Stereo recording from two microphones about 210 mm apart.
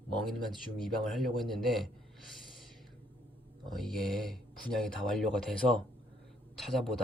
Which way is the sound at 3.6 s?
Centre (ahead or behind).